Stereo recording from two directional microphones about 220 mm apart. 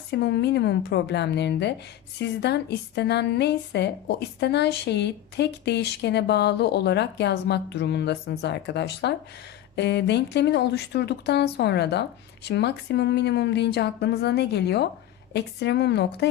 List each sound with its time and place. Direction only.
0.1 s speech: 50° left (ahead or behind)